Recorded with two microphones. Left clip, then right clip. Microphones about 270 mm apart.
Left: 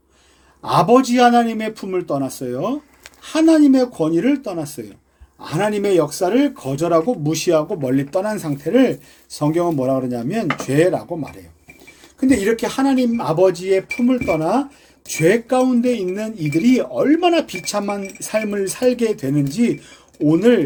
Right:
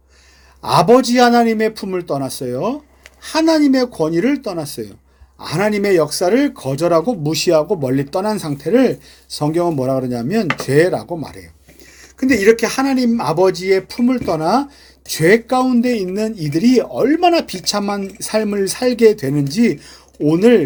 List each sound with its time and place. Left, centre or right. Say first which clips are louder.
0.6 s speech: right 3 dB; right